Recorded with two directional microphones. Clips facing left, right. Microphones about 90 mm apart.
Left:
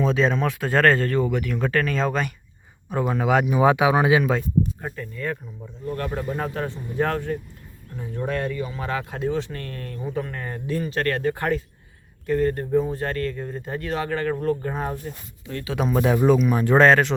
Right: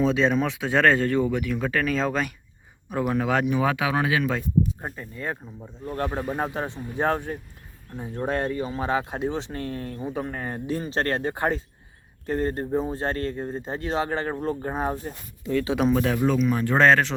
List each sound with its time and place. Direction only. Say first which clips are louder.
0.0 s speech: even; centre (ahead or behind)
3.6 s speech: left 6 dB; 20° left (ahead or behind)
4.2 s speech: left 3 dB; 5° left (ahead or behind)
4.8 s speech: left 3 dB; 20° right (ahead or behind)
8.1 s speech: even; 30° right (ahead or behind)
14.3 s speech: left 2 dB; 15° right (ahead or behind)
15.7 s speech: right 2 dB; centre (ahead or behind)
16.0 s speech: left 4 dB; 15° left (ahead or behind)
16.8 s speech: left 1 dB; 5° left (ahead or behind)